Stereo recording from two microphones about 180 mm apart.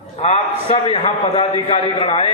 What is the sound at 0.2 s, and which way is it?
A man's voice, 40° left (ahead or behind).